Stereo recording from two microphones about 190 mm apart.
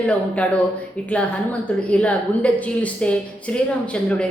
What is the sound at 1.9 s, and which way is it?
A woman's voice, 5° left (ahead or behind).